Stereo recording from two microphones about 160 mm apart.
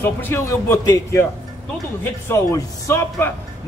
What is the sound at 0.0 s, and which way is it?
A man's voice, 15° left (ahead or behind).